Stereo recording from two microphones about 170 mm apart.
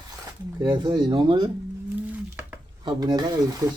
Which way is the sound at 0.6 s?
25° right (ahead or behind).